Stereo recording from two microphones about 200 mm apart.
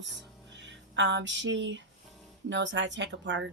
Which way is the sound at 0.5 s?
65° right (ahead or behind).